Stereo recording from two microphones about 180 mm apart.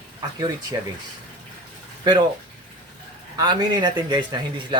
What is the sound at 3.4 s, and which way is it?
Speech, 20° right (ahead or behind).